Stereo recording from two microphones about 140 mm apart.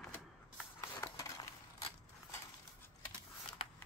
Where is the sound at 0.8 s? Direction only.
25° left (ahead or behind).